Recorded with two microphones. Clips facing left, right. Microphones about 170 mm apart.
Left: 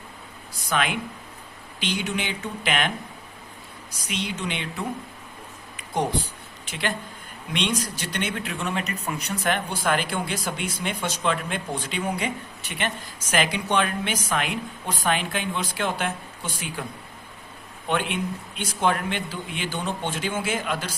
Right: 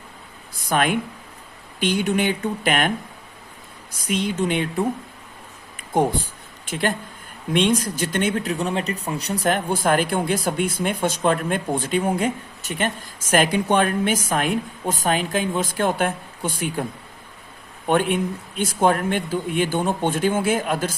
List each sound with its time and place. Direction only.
0.5 s speech: 50° right (ahead or behind)
3.9 s speech: 50° right (ahead or behind)
5.7 s a sound: 50° right (ahead or behind)
6.7 s speech: 50° right (ahead or behind)
17.8 s speech: 45° right (ahead or behind)